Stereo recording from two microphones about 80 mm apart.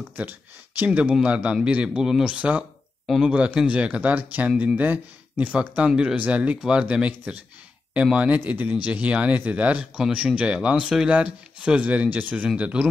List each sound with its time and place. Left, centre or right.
0.1 s speech: right